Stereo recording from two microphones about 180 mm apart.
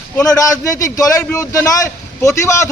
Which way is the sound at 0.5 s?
15° left (ahead or behind).